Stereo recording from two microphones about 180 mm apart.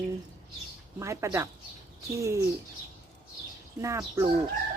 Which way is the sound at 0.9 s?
15° right (ahead or behind).